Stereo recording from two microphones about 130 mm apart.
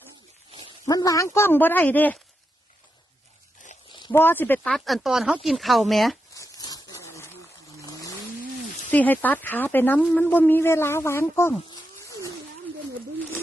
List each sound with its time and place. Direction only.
0.8 s speech: 25° left (ahead or behind)
4.1 s speech: 15° left (ahead or behind)
4.7 s speech: centre (ahead or behind)
6.3 s a sound: 25° left (ahead or behind)
7.8 s vehicle: 25° left (ahead or behind)
8.9 s speech: 15° left (ahead or behind)